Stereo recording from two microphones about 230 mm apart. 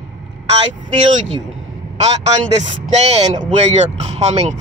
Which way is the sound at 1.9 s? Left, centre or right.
Right.